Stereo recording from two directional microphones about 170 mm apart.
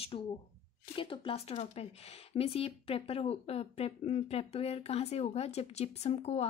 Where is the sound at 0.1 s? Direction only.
35° left (ahead or behind).